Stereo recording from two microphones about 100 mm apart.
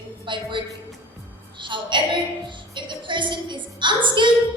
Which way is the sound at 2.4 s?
50° right (ahead or behind).